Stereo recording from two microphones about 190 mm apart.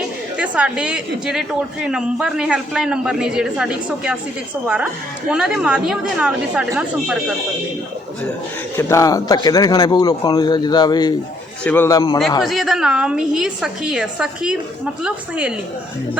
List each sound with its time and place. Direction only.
0.3 s a man's voice: 5° right (ahead or behind)
8.8 s speech: 15° left (ahead or behind)
11.6 s a man's voice: 10° left (ahead or behind)
12.4 s a man's voice: centre (ahead or behind)